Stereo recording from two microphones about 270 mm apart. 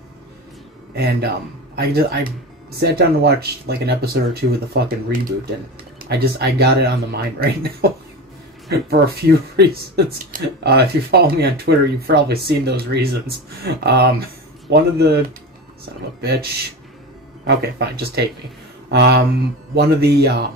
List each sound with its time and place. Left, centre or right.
0.9 s speech: right
5.9 s speech: right
9.0 s speech: right
17.5 s speech: right